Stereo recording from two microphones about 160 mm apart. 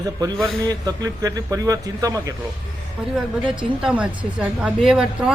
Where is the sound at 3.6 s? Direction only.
5° right (ahead or behind).